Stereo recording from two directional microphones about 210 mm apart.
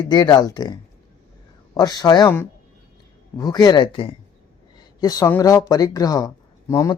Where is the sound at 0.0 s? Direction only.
20° left (ahead or behind).